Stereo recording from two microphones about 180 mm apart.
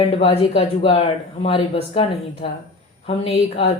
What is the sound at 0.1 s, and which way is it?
Speech, 30° left (ahead or behind).